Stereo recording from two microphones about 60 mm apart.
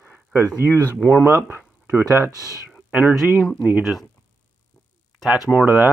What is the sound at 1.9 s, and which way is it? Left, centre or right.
Speech, right.